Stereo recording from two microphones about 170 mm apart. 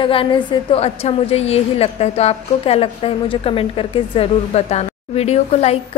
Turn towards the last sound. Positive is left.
turn(degrees=40)  # may be behind; listen again after turning